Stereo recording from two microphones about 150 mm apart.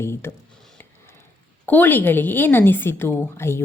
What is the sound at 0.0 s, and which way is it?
Speech, 15° left (ahead or behind).